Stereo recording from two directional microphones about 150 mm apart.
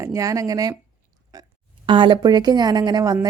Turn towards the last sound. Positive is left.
turn(degrees=-25)  # may be behind; listen again after turning